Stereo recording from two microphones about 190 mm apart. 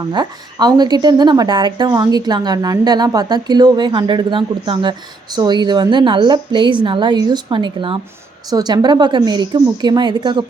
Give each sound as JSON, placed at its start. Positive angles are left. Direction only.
{"t": 0.1, "sound": "a woman's voice", "side_deg": -20}